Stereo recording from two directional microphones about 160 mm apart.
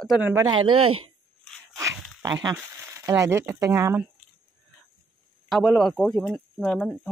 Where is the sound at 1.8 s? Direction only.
20° right (ahead or behind).